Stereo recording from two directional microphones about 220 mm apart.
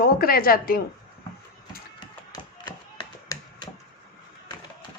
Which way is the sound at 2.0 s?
20° left (ahead or behind).